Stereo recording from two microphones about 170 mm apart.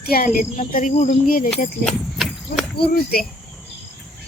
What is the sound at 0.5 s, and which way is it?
Speech, 50° left (ahead or behind).